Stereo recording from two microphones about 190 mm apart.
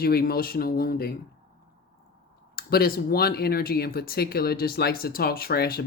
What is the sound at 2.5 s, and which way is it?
Speech, 55° left (ahead or behind).